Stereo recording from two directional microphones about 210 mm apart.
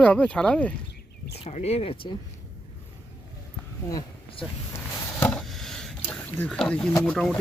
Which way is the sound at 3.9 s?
20° left (ahead or behind).